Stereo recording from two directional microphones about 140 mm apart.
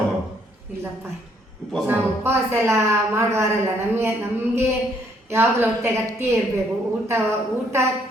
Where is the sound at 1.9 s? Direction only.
15° right (ahead or behind).